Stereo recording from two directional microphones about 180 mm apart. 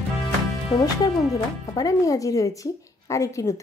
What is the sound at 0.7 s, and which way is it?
Speech, 20° left (ahead or behind).